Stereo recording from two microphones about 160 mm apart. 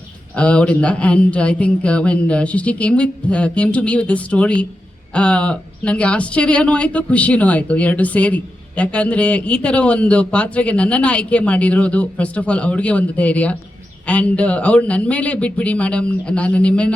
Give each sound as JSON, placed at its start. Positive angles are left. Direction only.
{"t": 0.3, "sound": "speech", "side_deg": 5}